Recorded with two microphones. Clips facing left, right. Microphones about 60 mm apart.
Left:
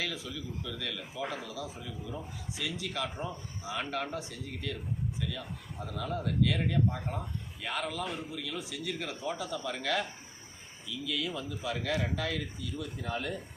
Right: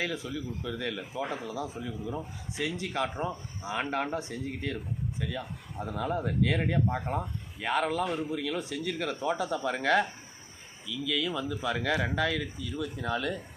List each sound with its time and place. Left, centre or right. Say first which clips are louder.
0.0 s a man's voice: right 4 dB; right
11.3 s a man's voice: right 5 dB; right
11.9 s a man's voice: right 4 dB; right